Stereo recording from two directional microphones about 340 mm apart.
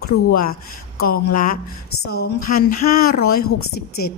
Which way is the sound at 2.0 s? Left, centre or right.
Left.